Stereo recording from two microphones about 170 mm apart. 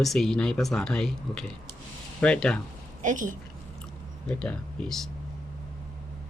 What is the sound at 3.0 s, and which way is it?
Speech, 50° right (ahead or behind).